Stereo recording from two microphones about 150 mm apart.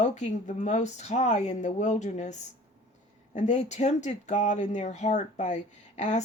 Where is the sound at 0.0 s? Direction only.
50° left (ahead or behind).